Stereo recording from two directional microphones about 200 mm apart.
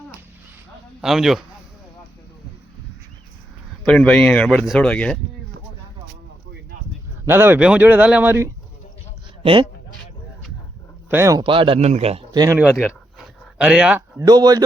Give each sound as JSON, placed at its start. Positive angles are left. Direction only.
{"t": 1.0, "sound": "speech", "side_deg": 0}
{"t": 3.8, "sound": "speech", "side_deg": 5}
{"t": 7.3, "sound": "a man's voice", "side_deg": -10}
{"t": 9.4, "sound": "speech", "side_deg": -25}
{"t": 11.1, "sound": "speech", "side_deg": -15}
{"t": 12.5, "sound": "speech", "side_deg": 0}
{"t": 13.1, "sound": "dog", "side_deg": -5}
{"t": 14.3, "sound": "speech", "side_deg": -20}